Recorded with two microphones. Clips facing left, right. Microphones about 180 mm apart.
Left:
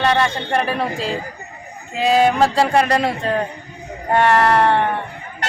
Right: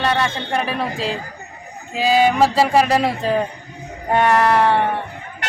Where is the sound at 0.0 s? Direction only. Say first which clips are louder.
Left 2 dB; centre (ahead or behind).